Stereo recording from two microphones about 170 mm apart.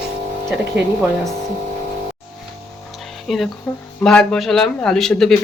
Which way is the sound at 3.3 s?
Centre (ahead or behind).